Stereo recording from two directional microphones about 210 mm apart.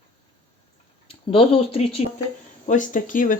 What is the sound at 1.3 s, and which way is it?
Speech, 25° left (ahead or behind).